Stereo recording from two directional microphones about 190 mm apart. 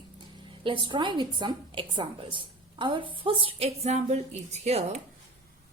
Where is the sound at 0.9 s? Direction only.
25° right (ahead or behind).